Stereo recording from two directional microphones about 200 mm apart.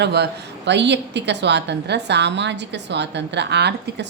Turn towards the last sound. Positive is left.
turn(degrees=-55)  # may be behind; listen again after turning